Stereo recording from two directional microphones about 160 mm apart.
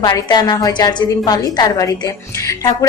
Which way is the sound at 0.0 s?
25° left (ahead or behind).